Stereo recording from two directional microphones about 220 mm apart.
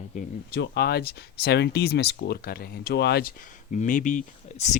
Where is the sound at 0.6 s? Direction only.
45° left (ahead or behind).